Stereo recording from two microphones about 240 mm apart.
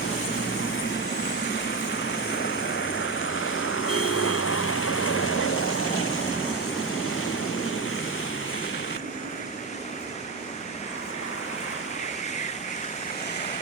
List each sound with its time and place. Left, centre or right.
2.4 s vehicle: left